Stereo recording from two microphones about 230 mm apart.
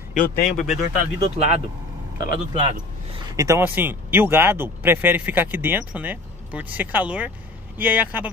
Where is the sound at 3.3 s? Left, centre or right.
Centre.